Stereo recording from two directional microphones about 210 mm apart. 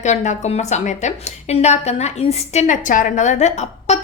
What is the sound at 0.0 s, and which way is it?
A woman's voice, 35° left (ahead or behind).